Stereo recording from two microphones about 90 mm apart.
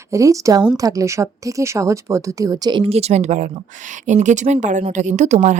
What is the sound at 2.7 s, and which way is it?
Speech, 70° right (ahead or behind).